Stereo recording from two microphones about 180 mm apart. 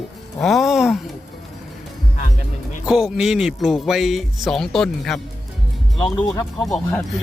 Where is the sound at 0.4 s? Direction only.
Centre (ahead or behind).